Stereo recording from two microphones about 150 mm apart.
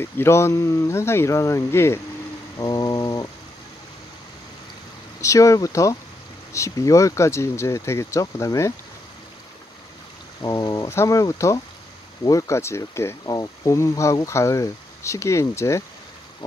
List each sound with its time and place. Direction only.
0.0 s speech: 15° left (ahead or behind)
2.6 s music: 25° left (ahead or behind)
5.2 s speech: 20° left (ahead or behind)
10.4 s speech: 25° left (ahead or behind)